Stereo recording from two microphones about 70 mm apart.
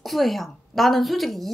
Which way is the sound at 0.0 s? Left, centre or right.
Centre.